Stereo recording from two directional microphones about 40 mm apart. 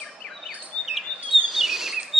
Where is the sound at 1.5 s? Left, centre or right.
Centre.